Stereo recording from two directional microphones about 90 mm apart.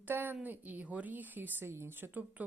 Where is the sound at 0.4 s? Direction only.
20° right (ahead or behind).